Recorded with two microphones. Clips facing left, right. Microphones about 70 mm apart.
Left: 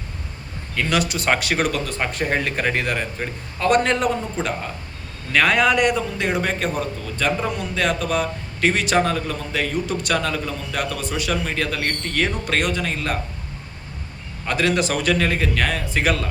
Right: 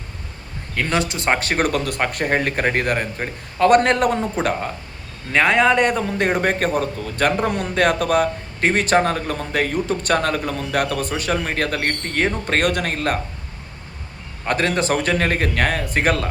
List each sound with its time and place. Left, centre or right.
0.8 s a man's voice: right
1.5 s speech: right
5.3 s speech: right
8.6 s a man's voice: right
12.6 s speech: right
14.4 s a man's voice: right